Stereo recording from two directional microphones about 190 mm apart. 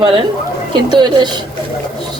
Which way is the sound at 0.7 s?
25° right (ahead or behind).